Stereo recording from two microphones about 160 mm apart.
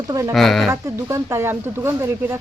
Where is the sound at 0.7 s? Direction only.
20° right (ahead or behind).